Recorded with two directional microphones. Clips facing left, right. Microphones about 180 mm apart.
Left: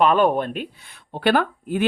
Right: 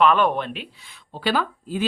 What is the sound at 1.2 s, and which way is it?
Speech, 60° left (ahead or behind).